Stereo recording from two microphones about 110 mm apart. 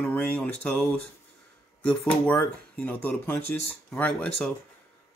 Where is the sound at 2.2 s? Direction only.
15° left (ahead or behind).